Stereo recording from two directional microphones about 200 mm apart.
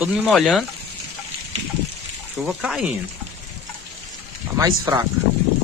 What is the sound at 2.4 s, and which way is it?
Speech, 5° right (ahead or behind).